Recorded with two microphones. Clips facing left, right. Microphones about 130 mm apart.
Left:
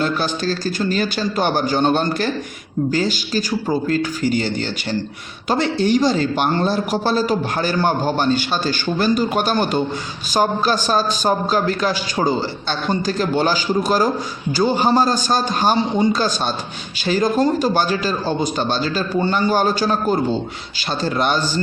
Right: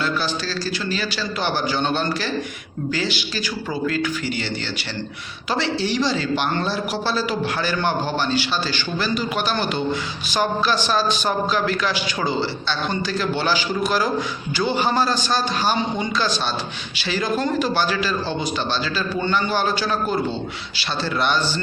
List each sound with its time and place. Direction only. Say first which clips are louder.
0.0 s a man's voice: left 4 dB; 45° left (ahead or behind)